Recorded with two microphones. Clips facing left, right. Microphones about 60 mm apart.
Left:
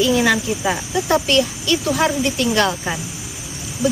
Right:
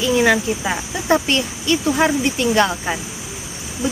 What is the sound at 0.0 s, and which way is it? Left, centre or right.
Speech, centre.